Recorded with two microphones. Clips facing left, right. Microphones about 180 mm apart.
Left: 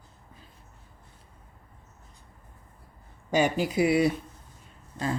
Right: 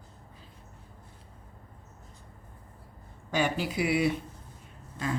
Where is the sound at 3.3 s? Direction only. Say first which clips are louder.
Left 4 dB; 45° left (ahead or behind).